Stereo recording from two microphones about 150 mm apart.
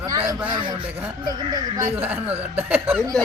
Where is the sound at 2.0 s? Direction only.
10° right (ahead or behind).